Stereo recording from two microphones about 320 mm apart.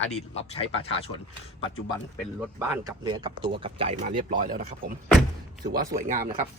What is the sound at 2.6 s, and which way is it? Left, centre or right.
Speech, centre.